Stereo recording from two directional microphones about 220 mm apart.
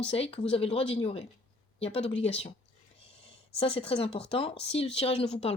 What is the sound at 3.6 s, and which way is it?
Speech, 25° left (ahead or behind).